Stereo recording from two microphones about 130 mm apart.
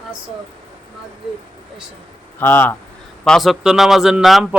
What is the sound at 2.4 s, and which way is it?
Speech, 15° left (ahead or behind).